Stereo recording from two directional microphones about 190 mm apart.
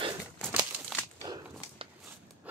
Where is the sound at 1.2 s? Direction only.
20° right (ahead or behind).